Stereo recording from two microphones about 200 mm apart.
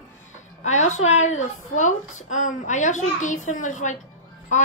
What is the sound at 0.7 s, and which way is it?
A woman's voice, 35° left (ahead or behind).